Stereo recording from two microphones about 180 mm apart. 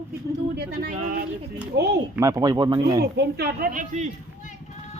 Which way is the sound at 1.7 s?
65° right (ahead or behind).